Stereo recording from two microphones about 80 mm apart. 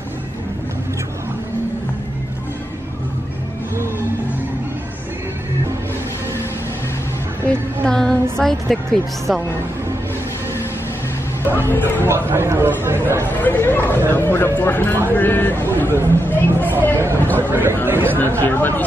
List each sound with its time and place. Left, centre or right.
7.4 s a woman's voice: centre
11.5 s speech: left
12.1 s a man's voice: right
13.4 s speech: left
17.5 s speech: right
18.4 s speech: left